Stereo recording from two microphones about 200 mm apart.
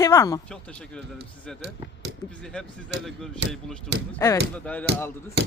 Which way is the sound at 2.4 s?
5° left (ahead or behind).